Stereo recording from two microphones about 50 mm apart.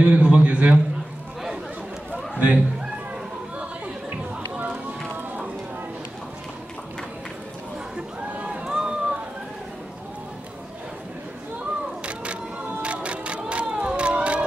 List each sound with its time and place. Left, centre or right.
0.0 s a man's voice: right
2.1 s a sound: right
4.6 s run: right
8.6 s run: centre
12.8 s music: right